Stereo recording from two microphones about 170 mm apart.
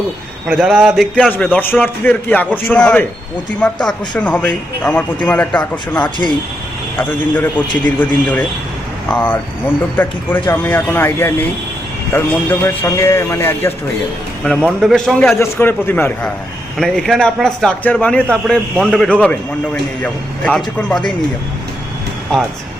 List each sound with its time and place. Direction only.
0.4 s a man's voice: 5° right (ahead or behind)
1.1 s a man's voice: 5° left (ahead or behind)
6.0 s speech: 25° left (ahead or behind)
6.9 s a man's voice: 10° left (ahead or behind)
14.4 s a man's voice: 5° left (ahead or behind)